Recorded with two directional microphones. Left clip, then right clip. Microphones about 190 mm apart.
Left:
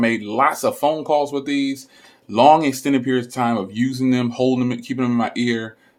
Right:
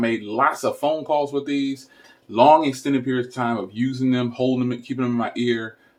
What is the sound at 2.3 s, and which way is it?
Speech, 45° left (ahead or behind).